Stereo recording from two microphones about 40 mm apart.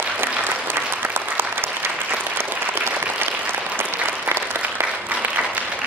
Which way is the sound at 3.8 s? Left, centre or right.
Right.